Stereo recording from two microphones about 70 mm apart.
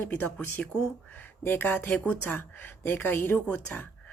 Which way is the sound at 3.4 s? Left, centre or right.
Centre.